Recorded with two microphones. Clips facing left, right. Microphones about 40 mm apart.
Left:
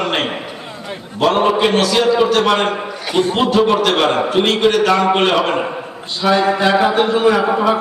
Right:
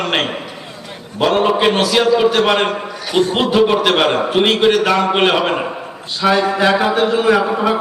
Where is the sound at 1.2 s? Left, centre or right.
Centre.